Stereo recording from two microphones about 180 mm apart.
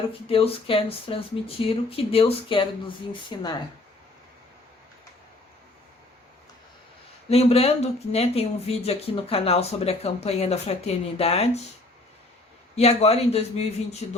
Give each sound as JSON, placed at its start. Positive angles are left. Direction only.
{"t": 0.1, "sound": "speech", "side_deg": 30}
{"t": 7.3, "sound": "speech", "side_deg": 35}
{"t": 12.7, "sound": "speech", "side_deg": 35}